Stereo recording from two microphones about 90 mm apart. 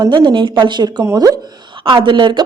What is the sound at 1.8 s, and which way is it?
Speech, 65° right (ahead or behind).